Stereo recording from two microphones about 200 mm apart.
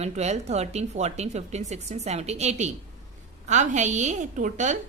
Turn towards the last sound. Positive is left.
turn(degrees=-35)  # may be behind; listen again after turning